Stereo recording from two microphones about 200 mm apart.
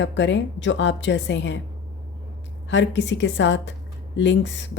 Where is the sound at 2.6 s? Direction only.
65° left (ahead or behind).